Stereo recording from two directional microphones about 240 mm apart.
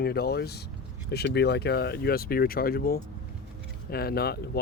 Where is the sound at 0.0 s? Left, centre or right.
Left.